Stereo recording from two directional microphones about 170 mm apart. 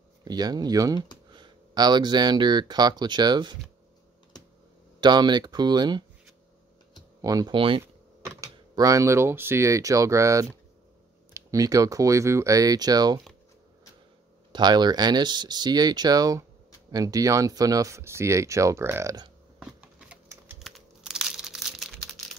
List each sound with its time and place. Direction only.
0.2 s speech: 25° right (ahead or behind)
5.0 s speech: 25° right (ahead or behind)
7.2 s speech: 20° right (ahead or behind)
8.4 s speech: 20° right (ahead or behind)
14.5 s speech: 25° right (ahead or behind)
19.6 s shuffling cards: 5° right (ahead or behind)
20.5 s crumpling: centre (ahead or behind)